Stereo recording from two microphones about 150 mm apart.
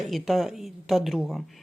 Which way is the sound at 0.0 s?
Centre (ahead or behind).